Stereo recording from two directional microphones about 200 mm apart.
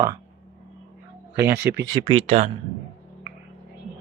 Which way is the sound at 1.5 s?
55° right (ahead or behind).